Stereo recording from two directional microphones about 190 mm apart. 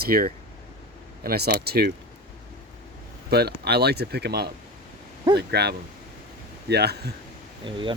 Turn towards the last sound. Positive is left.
turn(degrees=-25)  # may be behind; listen again after turning